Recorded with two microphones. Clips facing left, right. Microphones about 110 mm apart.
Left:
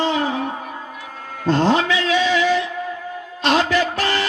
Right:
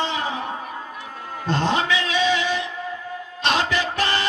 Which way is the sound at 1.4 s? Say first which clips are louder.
Left 5 dB; 20° right (ahead or behind).